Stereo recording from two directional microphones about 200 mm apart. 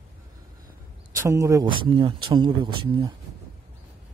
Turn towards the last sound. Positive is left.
turn(degrees=-25)  # may be behind; listen again after turning